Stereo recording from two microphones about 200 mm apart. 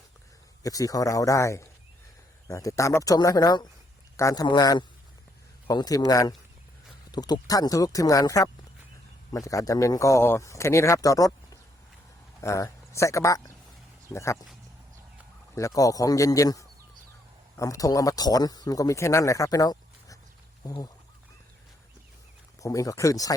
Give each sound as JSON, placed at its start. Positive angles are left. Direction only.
{"t": 0.6, "sound": "a man's voice", "side_deg": 15}
{"t": 15.5, "sound": "a man's voice", "side_deg": 15}
{"t": 22.6, "sound": "a man's voice", "side_deg": 15}